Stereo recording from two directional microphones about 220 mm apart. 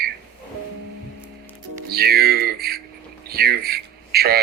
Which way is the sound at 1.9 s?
45° right (ahead or behind).